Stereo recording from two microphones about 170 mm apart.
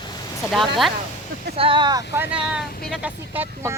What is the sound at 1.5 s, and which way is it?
Speech, 30° right (ahead or behind).